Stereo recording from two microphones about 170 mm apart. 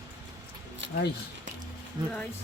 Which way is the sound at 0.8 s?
90° right.